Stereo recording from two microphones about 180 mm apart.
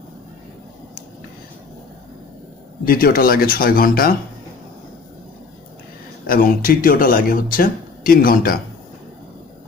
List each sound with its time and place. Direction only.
2.8 s speech: 55° left (ahead or behind)
6.2 s speech: 50° left (ahead or behind)